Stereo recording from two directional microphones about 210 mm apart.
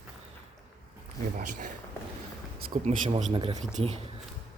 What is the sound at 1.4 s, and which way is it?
Speech, 40° right (ahead or behind).